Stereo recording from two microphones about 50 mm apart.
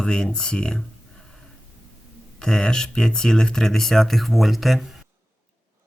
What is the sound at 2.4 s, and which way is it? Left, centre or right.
Speech, centre.